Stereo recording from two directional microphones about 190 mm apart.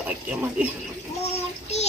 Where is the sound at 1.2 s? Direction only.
35° left (ahead or behind).